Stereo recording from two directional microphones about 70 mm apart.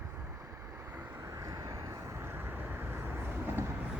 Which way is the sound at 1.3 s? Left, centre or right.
Right.